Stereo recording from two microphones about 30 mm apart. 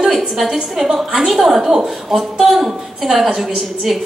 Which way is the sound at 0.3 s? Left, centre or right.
Centre.